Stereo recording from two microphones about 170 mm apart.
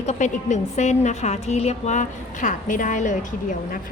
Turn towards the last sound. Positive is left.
turn(degrees=50)  # may be behind; listen again after turning